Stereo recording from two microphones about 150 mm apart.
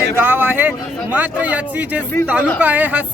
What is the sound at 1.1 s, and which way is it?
Speech, 10° right (ahead or behind).